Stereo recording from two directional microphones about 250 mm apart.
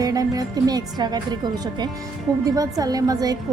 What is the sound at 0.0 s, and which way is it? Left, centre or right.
A woman's voice, centre.